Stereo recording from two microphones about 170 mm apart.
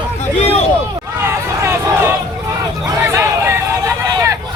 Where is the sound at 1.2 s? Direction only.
15° right (ahead or behind).